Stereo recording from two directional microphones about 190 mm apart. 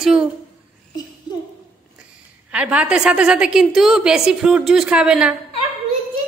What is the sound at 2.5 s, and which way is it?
A woman's voice, 5° right (ahead or behind).